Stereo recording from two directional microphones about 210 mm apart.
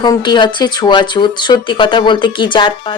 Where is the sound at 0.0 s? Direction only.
20° left (ahead or behind).